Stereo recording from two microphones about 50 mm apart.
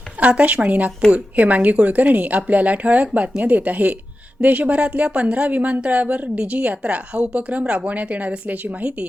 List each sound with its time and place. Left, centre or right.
0.2 s a woman's voice: right
8.8 s speech: right